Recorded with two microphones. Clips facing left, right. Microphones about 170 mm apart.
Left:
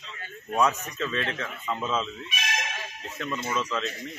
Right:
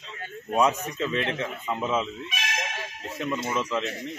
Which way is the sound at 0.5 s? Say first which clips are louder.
Right 2 dB; 15° right (ahead or behind).